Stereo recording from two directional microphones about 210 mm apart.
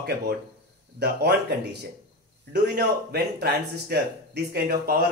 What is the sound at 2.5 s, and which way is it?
Speech, 50° right (ahead or behind).